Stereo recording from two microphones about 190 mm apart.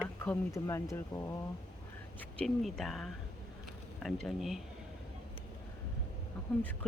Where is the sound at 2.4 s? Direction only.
Centre (ahead or behind).